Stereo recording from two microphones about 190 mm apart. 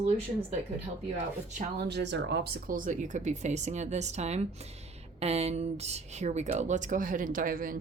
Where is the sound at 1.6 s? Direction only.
60° right (ahead or behind).